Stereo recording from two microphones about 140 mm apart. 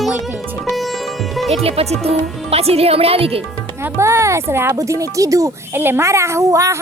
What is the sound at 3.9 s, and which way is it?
Speech, 20° right (ahead or behind).